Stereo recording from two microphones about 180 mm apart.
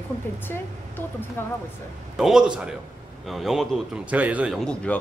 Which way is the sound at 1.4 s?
15° left (ahead or behind).